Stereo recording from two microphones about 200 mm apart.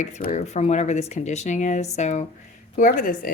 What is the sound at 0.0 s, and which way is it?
Speech, 35° left (ahead or behind).